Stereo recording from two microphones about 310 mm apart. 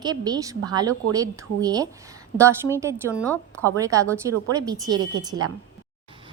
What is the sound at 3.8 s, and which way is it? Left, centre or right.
A woman's voice, centre.